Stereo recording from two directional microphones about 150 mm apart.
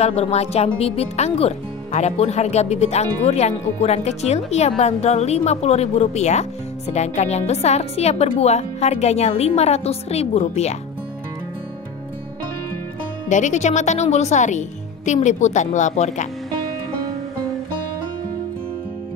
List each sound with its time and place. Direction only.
0.0 s speech: 45° left (ahead or behind)
13.3 s speech: 55° left (ahead or behind)